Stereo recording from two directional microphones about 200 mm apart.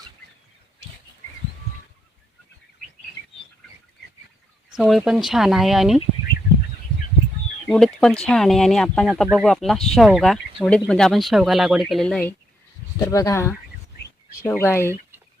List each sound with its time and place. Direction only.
4.7 s speech: centre (ahead or behind)
7.7 s speech: 5° left (ahead or behind)
13.1 s speech: 15° left (ahead or behind)